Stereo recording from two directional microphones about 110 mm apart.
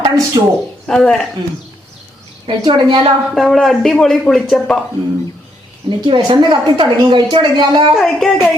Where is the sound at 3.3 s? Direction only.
Centre (ahead or behind).